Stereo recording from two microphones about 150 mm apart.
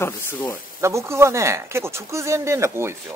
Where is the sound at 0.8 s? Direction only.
20° right (ahead or behind).